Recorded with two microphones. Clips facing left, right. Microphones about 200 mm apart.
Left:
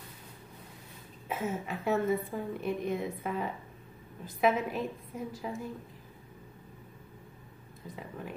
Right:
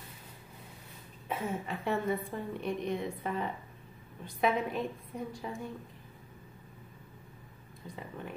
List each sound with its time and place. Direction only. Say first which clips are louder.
1.3 s a woman's voice: left 1 dB; centre (ahead or behind)
7.8 s a woman's voice: left 1 dB; centre (ahead or behind)